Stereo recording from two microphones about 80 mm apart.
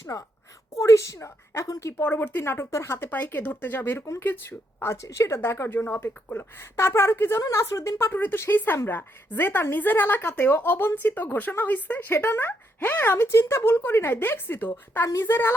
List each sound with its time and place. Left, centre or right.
0.0 s a woman's voice: left
2.0 s speech: left
7.5 s speech: left